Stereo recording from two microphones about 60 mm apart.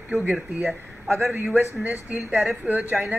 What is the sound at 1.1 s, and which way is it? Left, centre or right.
Speech, right.